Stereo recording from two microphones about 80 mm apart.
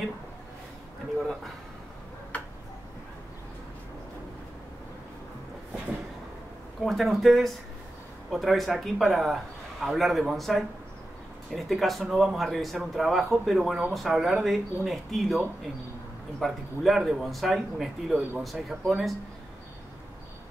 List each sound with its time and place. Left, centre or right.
2.3 s tick-tock: centre
6.8 s speech: centre